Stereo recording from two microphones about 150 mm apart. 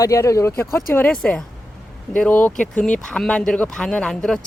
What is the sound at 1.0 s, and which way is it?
Speech, 10° left (ahead or behind).